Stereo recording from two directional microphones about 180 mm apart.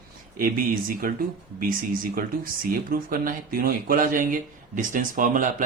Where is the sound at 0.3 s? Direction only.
50° right (ahead or behind).